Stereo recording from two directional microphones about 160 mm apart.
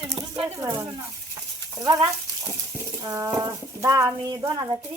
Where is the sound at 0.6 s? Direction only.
15° right (ahead or behind).